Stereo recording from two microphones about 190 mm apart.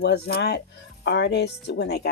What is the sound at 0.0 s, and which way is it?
A woman's voice, 55° left (ahead or behind).